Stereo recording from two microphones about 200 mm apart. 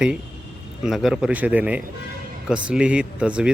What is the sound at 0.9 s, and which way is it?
A man's voice, centre (ahead or behind).